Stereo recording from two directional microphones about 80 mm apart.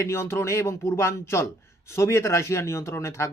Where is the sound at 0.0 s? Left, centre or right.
Left.